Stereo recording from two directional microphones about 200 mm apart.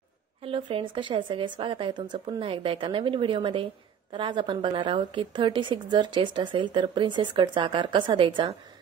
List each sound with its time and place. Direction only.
0.4 s a woman's voice: 25° right (ahead or behind)